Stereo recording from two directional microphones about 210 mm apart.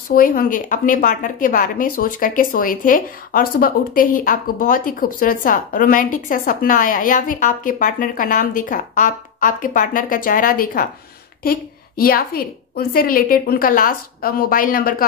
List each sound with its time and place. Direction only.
0.1 s a woman's voice: 45° left (ahead or behind)
12.0 s a woman's voice: 45° left (ahead or behind)